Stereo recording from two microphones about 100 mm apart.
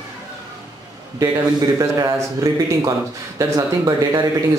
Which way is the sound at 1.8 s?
40° right (ahead or behind).